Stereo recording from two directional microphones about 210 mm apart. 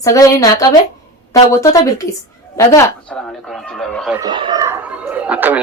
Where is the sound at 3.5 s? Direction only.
Centre (ahead or behind).